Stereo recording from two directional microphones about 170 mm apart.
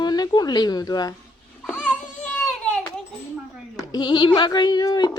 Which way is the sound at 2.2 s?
5° left (ahead or behind).